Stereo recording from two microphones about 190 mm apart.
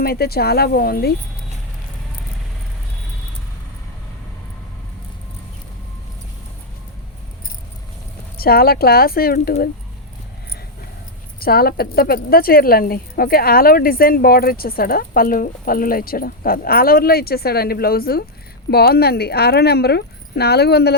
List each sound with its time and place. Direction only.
0.0 s speech: 55° left (ahead or behind)
8.4 s speech: 55° left (ahead or behind)
11.3 s speech: 50° left (ahead or behind)